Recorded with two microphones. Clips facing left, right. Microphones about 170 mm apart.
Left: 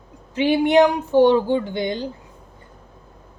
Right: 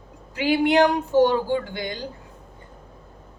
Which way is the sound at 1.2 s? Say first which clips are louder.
Left 4 dB; 20° left (ahead or behind).